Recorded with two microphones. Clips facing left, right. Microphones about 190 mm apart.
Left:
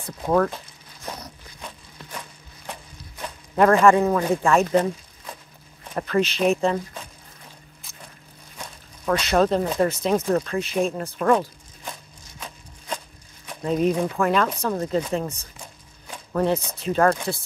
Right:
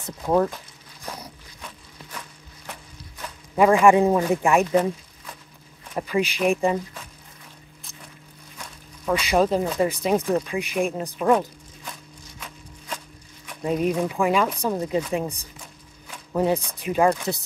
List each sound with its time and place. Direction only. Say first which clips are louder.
0.0 s speech: even; 15° right (ahead or behind)
2.1 s a sound: left 2 dB; 30° left (ahead or behind)
3.5 s speech: even; 10° right (ahead or behind)
5.9 s speech: left 2 dB; 10° right (ahead or behind)
9.0 s speech: left 1 dB; 10° right (ahead or behind)
11.3 s a sound: even; 35° left (ahead or behind)
13.7 s speech: left 1 dB; 10° right (ahead or behind)
16.3 s speech: even; 15° right (ahead or behind)